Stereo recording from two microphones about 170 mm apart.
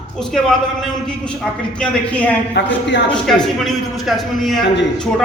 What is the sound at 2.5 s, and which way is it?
Speech, 90° left.